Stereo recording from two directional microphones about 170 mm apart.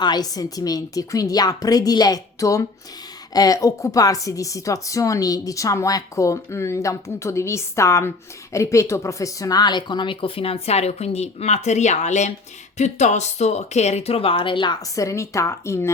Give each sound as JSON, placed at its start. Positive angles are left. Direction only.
{"t": 0.0, "sound": "a woman's voice", "side_deg": 25}